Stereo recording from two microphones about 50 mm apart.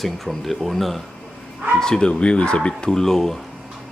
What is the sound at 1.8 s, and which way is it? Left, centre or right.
Speech, centre.